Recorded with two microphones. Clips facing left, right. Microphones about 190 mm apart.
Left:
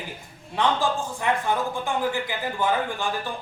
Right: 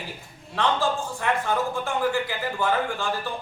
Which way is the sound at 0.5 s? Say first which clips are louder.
Left 1 dB; 15° left (ahead or behind).